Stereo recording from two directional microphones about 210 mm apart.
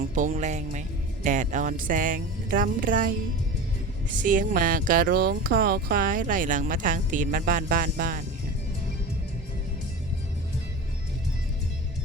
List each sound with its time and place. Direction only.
0.2 s speech: 35° right (ahead or behind)
4.2 s speech: 40° right (ahead or behind)